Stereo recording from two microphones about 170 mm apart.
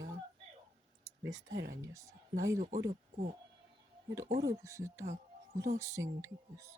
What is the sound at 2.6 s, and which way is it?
Speech, 50° right (ahead or behind).